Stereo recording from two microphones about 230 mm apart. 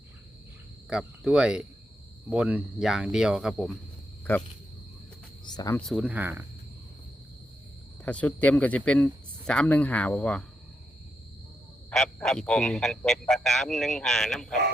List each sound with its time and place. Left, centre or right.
0.9 s speech: centre
5.5 s speech: centre
5.8 s speech: centre
8.0 s speech: centre
11.9 s speech: centre